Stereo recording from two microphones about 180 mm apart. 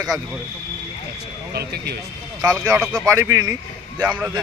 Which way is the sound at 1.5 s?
60° right (ahead or behind).